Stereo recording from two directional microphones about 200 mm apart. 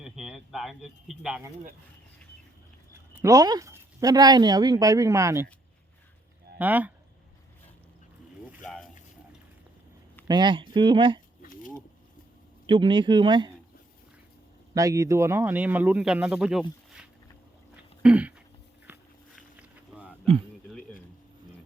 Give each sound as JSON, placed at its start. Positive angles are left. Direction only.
{"t": 0.0, "sound": "a sound", "side_deg": -5}
{"t": 2.9, "sound": "speech", "side_deg": -10}
{"t": 6.6, "sound": "speech", "side_deg": -10}
{"t": 8.6, "sound": "boat", "side_deg": 0}
{"t": 10.2, "sound": "speech", "side_deg": -20}
{"t": 12.6, "sound": "speech", "side_deg": -25}
{"t": 14.7, "sound": "speech", "side_deg": -15}
{"t": 18.0, "sound": "a sound", "side_deg": -5}